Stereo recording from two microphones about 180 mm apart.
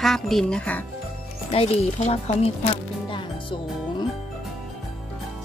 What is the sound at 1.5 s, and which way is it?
Speech, 35° left (ahead or behind).